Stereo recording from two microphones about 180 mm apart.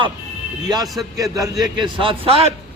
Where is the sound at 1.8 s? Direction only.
30° right (ahead or behind).